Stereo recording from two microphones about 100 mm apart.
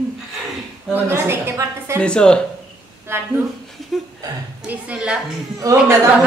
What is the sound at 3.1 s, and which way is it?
Speech, 25° right (ahead or behind).